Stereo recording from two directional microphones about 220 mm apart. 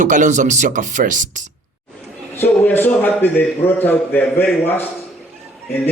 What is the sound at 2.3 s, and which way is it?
A man's voice, 10° left (ahead or behind).